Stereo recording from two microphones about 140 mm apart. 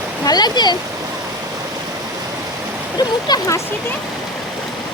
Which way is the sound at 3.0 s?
30° left (ahead or behind).